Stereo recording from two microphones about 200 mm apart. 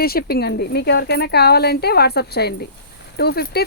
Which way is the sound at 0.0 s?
50° left (ahead or behind).